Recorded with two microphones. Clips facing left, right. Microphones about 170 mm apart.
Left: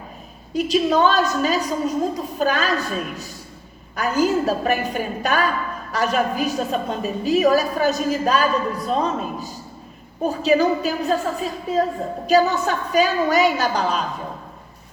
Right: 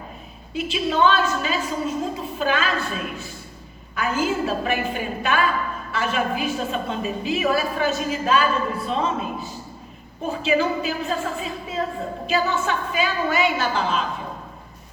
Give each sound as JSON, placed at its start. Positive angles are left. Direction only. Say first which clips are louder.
{"t": 0.5, "sound": "a woman's voice", "louder": "left 6 dB", "side_deg": 40}